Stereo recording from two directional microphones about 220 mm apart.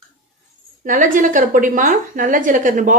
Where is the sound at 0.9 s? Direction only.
35° right (ahead or behind).